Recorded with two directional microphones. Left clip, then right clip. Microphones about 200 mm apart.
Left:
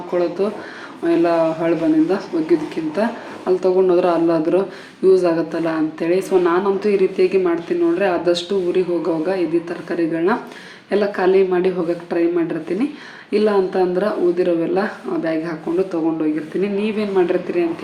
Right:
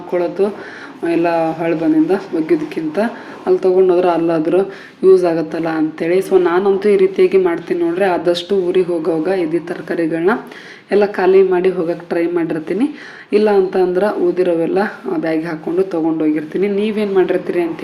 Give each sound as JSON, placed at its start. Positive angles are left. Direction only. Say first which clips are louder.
{"t": 0.1, "sound": "speech", "louder": "right 3 dB", "side_deg": -15}